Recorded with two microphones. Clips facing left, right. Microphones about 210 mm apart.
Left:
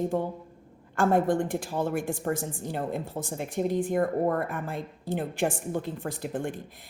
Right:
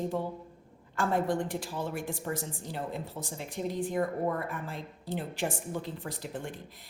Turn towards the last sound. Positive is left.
turn(degrees=50)  # may be behind; listen again after turning